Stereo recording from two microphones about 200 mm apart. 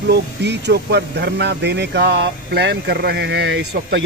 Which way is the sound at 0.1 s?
60° right (ahead or behind).